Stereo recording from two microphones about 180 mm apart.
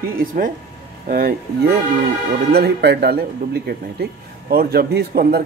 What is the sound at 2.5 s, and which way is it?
A man's voice, 65° right (ahead or behind).